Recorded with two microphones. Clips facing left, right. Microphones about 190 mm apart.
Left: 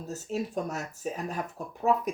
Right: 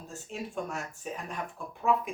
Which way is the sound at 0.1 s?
40° left (ahead or behind).